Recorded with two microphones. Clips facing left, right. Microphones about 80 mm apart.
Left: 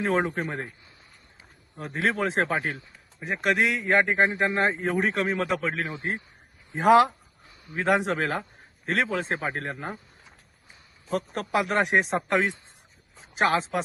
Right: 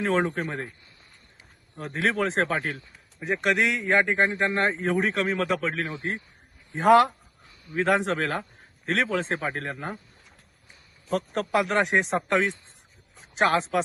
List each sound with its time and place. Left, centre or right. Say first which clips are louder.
0.0 s speech: right 1 dB; centre
1.7 s speech: right 1 dB; centre
6.7 s speech: even; centre
11.1 s speech: right 2 dB; centre